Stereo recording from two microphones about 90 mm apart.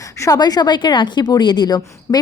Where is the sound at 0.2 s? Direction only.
45° left (ahead or behind).